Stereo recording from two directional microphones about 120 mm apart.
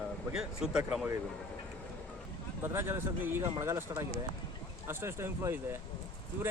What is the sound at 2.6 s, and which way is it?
Speech, 20° right (ahead or behind).